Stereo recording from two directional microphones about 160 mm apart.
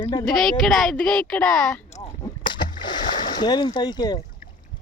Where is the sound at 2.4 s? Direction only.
30° left (ahead or behind).